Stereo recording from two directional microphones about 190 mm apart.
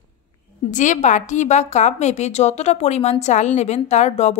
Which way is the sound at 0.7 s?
40° left (ahead or behind).